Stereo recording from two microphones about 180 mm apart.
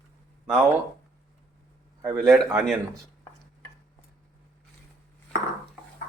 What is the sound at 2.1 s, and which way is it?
Speech, centre (ahead or behind).